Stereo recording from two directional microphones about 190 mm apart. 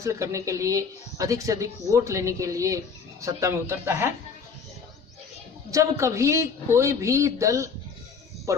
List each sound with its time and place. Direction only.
0.0 s speech: 15° right (ahead or behind)
5.7 s speech: 15° right (ahead or behind)
8.5 s music: 15° right (ahead or behind)